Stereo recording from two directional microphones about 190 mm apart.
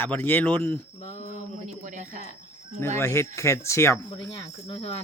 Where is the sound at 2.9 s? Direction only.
15° left (ahead or behind).